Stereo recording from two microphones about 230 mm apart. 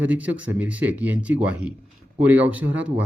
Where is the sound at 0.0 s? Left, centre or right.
Centre.